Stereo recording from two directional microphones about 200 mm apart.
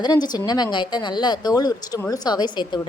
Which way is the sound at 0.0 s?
20° left (ahead or behind).